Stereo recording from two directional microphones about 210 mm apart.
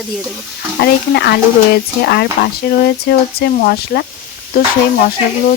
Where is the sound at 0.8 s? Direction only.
50° left (ahead or behind).